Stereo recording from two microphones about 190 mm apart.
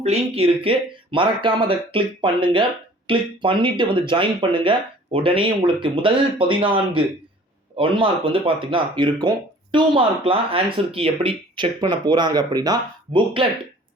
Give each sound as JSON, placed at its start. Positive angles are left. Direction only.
{"t": 0.0, "sound": "speech", "side_deg": -30}